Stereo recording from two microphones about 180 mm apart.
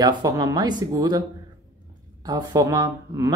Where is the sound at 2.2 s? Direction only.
20° right (ahead or behind).